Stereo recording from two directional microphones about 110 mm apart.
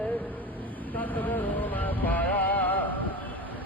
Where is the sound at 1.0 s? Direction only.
15° left (ahead or behind).